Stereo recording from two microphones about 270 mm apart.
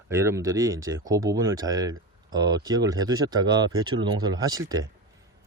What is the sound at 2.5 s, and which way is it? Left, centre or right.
Speech, centre.